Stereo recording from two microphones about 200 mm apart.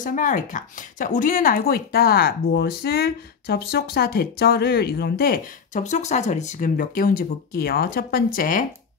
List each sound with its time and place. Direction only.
0.0 s speech: 40° left (ahead or behind)